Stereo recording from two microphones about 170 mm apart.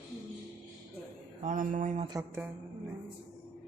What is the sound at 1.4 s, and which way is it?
Speech, 50° right (ahead or behind).